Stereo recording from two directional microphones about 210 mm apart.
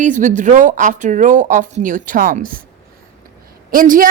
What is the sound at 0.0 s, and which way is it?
A man's voice, 35° right (ahead or behind).